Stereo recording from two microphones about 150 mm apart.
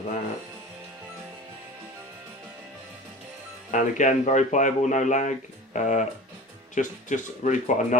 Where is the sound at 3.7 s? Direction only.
55° left (ahead or behind).